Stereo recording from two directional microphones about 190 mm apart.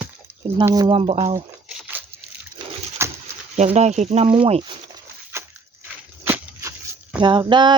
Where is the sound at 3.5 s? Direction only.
35° right (ahead or behind).